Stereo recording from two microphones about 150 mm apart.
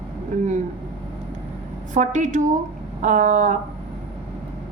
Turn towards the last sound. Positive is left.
turn(degrees=-55)  # may be behind; listen again after turning